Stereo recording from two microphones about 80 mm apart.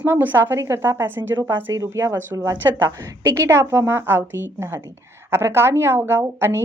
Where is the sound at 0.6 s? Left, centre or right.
Right.